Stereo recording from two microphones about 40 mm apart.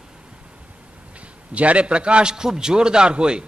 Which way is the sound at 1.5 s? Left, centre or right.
Right.